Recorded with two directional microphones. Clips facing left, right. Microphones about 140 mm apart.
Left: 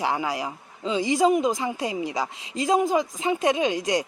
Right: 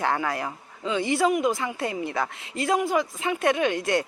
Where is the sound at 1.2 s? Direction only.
25° left (ahead or behind).